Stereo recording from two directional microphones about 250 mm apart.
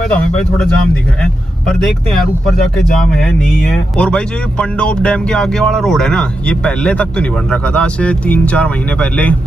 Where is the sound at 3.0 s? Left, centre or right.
Centre.